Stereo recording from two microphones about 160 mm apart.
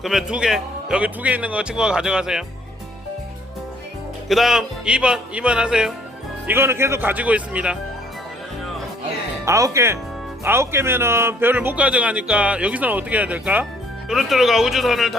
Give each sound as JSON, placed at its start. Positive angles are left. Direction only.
{"t": 0.0, "sound": "a man's voice", "side_deg": 0}
{"t": 4.3, "sound": "a man's voice", "side_deg": 0}
{"t": 9.5, "sound": "a man's voice", "side_deg": -20}